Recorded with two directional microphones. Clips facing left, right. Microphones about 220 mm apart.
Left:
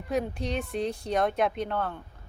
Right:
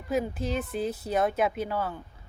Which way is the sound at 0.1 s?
Centre (ahead or behind).